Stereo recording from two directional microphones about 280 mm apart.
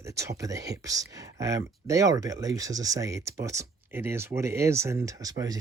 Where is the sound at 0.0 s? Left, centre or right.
Centre.